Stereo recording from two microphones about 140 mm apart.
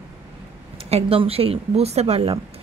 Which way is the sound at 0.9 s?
45° right (ahead or behind).